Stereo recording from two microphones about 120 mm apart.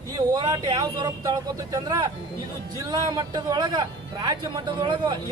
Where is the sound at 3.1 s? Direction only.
40° right (ahead or behind).